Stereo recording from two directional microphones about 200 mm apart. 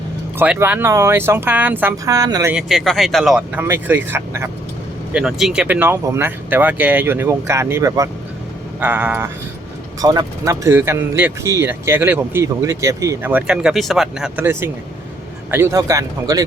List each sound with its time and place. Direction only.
0.3 s speech: 10° right (ahead or behind)
2.6 s speech: centre (ahead or behind)
10.0 s speech: 20° right (ahead or behind)